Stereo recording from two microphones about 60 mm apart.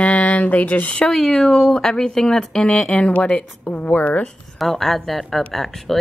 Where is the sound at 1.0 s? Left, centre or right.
Centre; by 4.3 s left.